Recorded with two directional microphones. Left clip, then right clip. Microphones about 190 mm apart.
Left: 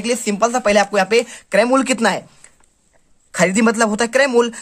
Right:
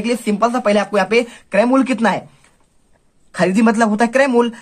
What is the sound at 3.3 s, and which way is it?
Speech, 30° left (ahead or behind).